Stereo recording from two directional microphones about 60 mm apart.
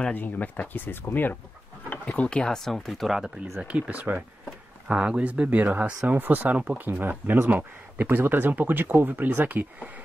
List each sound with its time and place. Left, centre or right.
0.1 s speech: left
2.0 s speech: centre
3.6 s speech: right
4.8 s speech: centre